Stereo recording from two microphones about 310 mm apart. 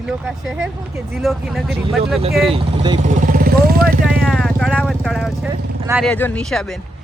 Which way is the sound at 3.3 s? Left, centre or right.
Right.